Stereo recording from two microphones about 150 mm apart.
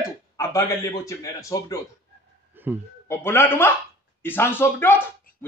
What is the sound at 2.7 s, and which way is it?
Speech, 15° right (ahead or behind).